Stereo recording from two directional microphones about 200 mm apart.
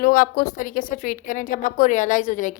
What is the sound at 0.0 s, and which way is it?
A woman's voice, 45° left (ahead or behind).